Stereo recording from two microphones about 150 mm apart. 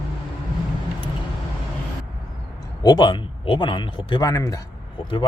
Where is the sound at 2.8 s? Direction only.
30° left (ahead or behind).